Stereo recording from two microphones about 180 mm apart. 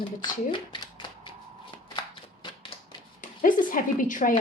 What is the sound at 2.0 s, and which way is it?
Shuffling cards, 25° left (ahead or behind).